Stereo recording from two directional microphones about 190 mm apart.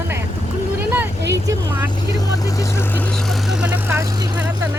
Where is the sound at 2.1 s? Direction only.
20° left (ahead or behind); by 4.7 s 15° right (ahead or behind).